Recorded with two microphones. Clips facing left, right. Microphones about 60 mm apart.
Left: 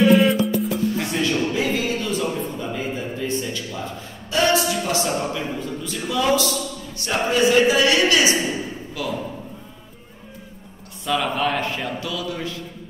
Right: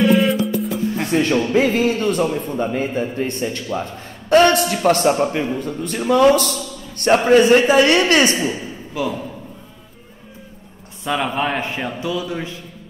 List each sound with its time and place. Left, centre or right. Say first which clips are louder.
0.0 s music: even; centre
1.1 s a man's voice: right 6 dB; right
9.0 s speech: right 6 dB; right
11.1 s speech: right 1 dB; right